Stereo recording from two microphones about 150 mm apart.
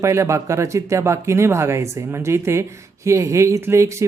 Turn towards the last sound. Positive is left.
turn(degrees=-20)  # may be behind; listen again after turning